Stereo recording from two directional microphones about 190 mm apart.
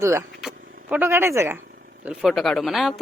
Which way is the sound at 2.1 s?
Centre (ahead or behind).